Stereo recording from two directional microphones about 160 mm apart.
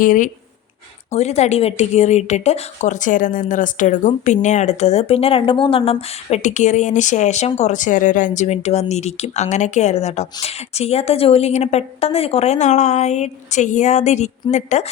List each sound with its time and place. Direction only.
0.0 s speech: 55° left (ahead or behind)
1.1 s speech: 45° left (ahead or behind)